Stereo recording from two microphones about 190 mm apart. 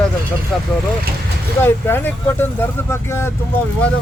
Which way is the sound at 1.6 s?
10° left (ahead or behind).